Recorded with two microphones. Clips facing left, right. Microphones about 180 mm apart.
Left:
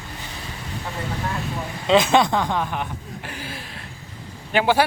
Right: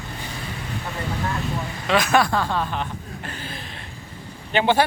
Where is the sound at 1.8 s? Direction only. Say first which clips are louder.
Left 3 dB; 25° left (ahead or behind); by 4.8 s 10° left (ahead or behind).